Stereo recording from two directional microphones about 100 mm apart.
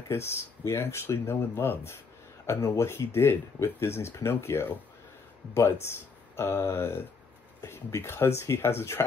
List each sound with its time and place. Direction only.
0.1 s speech: 25° left (ahead or behind)